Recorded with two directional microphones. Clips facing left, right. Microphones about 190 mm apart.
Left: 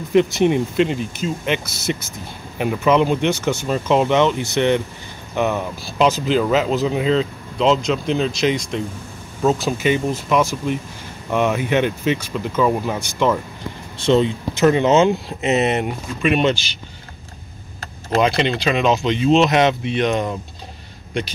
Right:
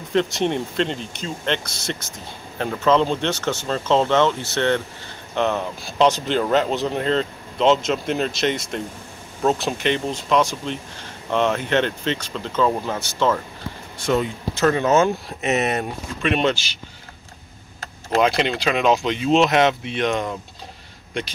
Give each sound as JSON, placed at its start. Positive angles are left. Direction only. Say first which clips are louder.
{"t": 0.1, "sound": "speech", "louder": "left 5 dB", "side_deg": 10}
{"t": 13.9, "sound": "speech", "louder": "left 5 dB", "side_deg": 25}
{"t": 16.2, "sound": "speech", "louder": "left 3 dB", "side_deg": 10}
{"t": 18.1, "sound": "speech", "louder": "left 1 dB", "side_deg": -5}